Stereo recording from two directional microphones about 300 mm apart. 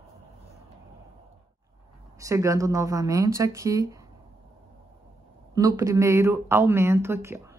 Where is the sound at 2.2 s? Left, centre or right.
Centre.